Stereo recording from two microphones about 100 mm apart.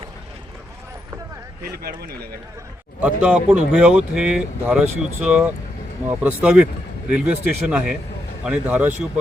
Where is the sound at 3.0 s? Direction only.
15° right (ahead or behind).